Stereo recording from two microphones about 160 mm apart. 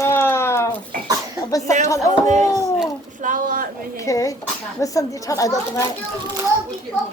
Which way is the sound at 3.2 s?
55° right (ahead or behind).